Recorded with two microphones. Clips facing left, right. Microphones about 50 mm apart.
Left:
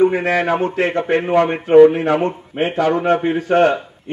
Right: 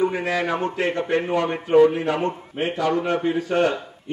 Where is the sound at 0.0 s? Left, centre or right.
Left.